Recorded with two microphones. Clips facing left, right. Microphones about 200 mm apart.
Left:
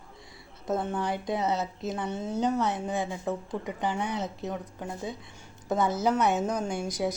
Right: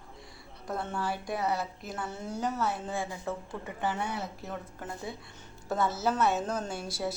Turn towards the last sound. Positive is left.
turn(degrees=15)  # may be behind; listen again after turning